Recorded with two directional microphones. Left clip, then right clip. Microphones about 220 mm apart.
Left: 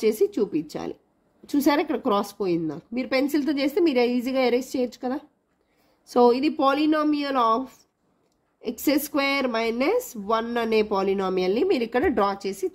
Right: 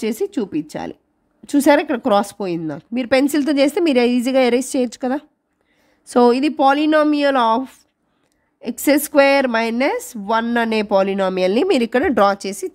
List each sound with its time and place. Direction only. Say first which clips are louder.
0.0 s a woman's voice: even; 35° right (ahead or behind)